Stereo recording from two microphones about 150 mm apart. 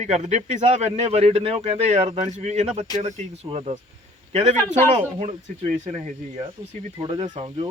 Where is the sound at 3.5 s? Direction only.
35° right (ahead or behind).